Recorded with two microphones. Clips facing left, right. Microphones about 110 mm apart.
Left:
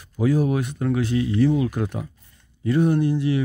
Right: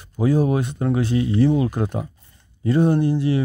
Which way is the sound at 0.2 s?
30° right (ahead or behind).